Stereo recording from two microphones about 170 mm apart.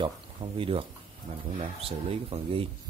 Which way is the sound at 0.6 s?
30° right (ahead or behind).